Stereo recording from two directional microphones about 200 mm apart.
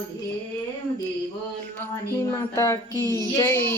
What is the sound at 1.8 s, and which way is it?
Music, 15° left (ahead or behind).